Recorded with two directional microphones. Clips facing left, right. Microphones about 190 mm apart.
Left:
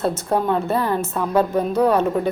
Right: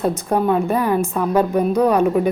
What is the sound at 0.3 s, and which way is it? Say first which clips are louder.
A woman's voice: right 3 dB; 10° right (ahead or behind).